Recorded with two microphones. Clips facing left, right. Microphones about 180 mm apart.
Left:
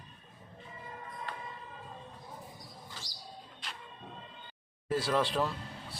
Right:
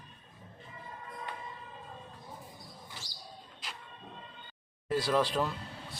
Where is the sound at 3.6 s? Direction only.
Centre (ahead or behind).